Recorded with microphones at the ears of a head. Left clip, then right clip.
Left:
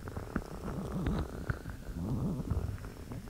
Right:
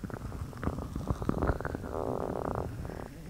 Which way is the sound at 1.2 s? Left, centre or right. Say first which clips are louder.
Right 10 dB; right.